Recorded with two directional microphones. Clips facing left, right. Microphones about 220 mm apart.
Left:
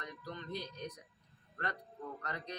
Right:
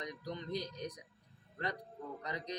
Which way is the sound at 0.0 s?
15° right (ahead or behind).